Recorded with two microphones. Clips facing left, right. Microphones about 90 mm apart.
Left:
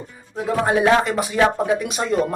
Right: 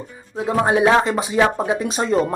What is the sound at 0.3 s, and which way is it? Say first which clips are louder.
Speech: right 2 dB; 20° right (ahead or behind).